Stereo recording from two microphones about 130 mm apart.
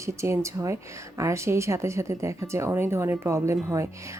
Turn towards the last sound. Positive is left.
turn(degrees=-20)  # may be behind; listen again after turning